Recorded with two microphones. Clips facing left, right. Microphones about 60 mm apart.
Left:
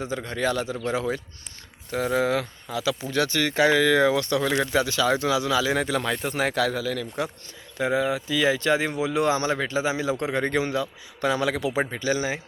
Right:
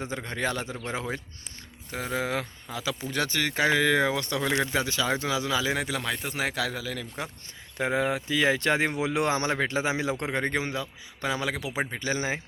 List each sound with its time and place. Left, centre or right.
0.3 s a man's voice: right
2.2 s a man's voice: centre
5.7 s speech: centre
7.8 s speech: right
10.3 s a man's voice: right
11.9 s a man's voice: right